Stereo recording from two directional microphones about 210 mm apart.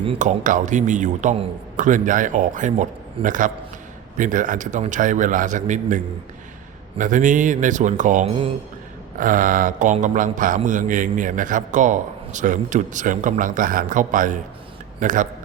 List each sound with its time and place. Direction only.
0.0 s speech: 30° right (ahead or behind)
7.0 s speech: 40° right (ahead or behind)